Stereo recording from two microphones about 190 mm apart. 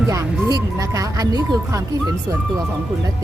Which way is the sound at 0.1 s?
15° right (ahead or behind).